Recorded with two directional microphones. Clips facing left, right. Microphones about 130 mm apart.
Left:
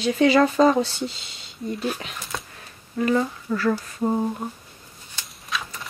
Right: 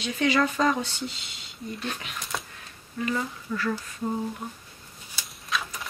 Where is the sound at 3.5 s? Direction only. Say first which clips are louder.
Left 6 dB; 45° left (ahead or behind).